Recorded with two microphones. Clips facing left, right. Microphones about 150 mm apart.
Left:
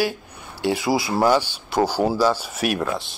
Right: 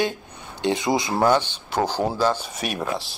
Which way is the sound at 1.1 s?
10° left (ahead or behind).